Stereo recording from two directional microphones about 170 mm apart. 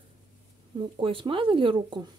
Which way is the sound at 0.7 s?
30° right (ahead or behind).